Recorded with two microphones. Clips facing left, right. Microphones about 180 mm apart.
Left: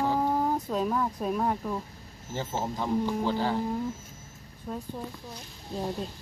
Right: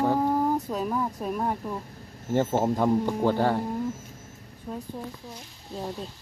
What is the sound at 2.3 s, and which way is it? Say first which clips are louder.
Speech: right 9 dB; 55° right (ahead or behind).